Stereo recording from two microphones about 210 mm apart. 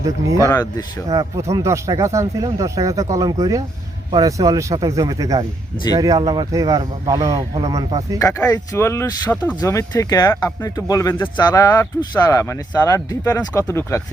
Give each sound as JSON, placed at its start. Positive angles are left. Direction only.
{"t": 0.0, "sound": "speech", "side_deg": -15}
{"t": 0.4, "sound": "speech", "side_deg": 15}
{"t": 1.1, "sound": "speech", "side_deg": -15}
{"t": 8.2, "sound": "speech", "side_deg": 15}